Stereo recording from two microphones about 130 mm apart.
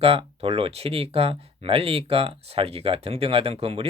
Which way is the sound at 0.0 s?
45° right (ahead or behind).